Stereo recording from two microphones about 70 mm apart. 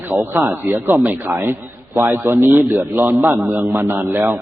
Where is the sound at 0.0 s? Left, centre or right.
Right.